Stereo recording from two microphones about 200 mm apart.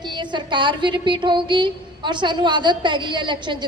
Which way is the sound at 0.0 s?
20° right (ahead or behind).